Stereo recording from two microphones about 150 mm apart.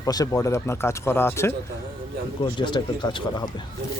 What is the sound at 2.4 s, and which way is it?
Speech, 30° left (ahead or behind).